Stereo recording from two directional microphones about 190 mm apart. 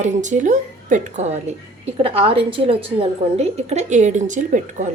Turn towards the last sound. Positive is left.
turn(degrees=-40)  # may be behind; listen again after turning